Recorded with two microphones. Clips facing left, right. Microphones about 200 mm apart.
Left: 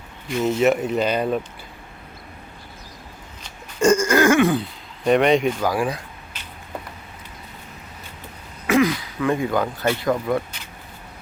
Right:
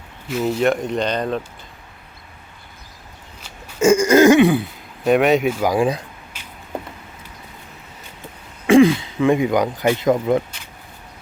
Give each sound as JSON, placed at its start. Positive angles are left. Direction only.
{"t": 0.3, "sound": "speech", "side_deg": -5}
{"t": 3.4, "sound": "burping", "side_deg": -5}
{"t": 4.0, "sound": "throat clearing", "side_deg": -20}
{"t": 5.0, "sound": "speech", "side_deg": -5}
{"t": 5.7, "sound": "speech", "side_deg": -20}
{"t": 6.3, "sound": "a sound", "side_deg": -10}
{"t": 8.6, "sound": "speech", "side_deg": -30}